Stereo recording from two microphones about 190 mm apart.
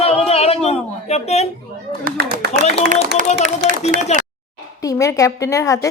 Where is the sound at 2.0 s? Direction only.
60° right (ahead or behind).